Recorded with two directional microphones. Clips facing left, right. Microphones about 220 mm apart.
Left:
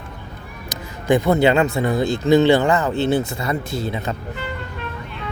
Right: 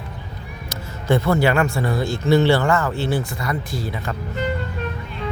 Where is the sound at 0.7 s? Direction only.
15° left (ahead or behind).